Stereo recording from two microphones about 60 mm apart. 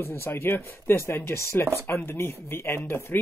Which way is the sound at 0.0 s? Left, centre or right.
Left.